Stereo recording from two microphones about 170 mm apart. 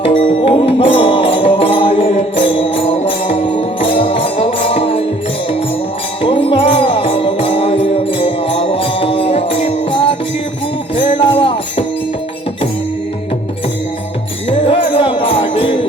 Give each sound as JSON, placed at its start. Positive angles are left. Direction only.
{"t": 0.0, "sound": "music", "side_deg": 30}
{"t": 6.2, "sound": "music", "side_deg": 30}
{"t": 14.6, "sound": "music", "side_deg": 30}